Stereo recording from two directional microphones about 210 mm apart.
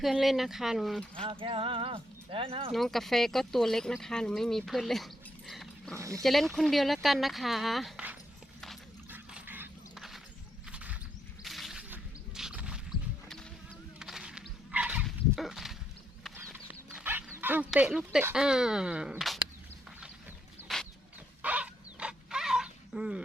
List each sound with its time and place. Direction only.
0.0 s speech: centre (ahead or behind)
1.2 s speech: 25° right (ahead or behind)
2.7 s speech: centre (ahead or behind)
6.0 s speech: 15° right (ahead or behind)
6.2 s speech: centre (ahead or behind)
8.6 s a sound: 5° right (ahead or behind)
14.0 s wild animals: 5° right (ahead or behind)
17.3 s speech: 10° right (ahead or behind)
20.7 s chicken: centre (ahead or behind)
21.4 s a sound: 5° right (ahead or behind)